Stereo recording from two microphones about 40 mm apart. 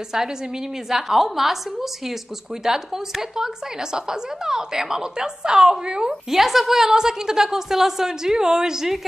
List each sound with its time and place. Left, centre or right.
0.8 s a woman's voice: centre
6.3 s a woman's voice: centre